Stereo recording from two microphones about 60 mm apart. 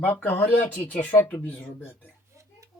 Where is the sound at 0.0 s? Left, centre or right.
Left.